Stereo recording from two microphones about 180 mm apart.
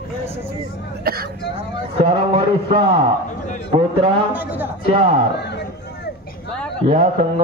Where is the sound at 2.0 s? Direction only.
30° right (ahead or behind).